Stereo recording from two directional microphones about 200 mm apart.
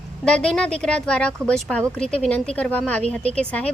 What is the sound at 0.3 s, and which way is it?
A woman's voice, 5° left (ahead or behind).